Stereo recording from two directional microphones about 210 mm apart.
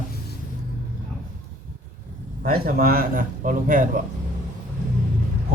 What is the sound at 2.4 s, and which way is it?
A man's voice, 45° right (ahead or behind).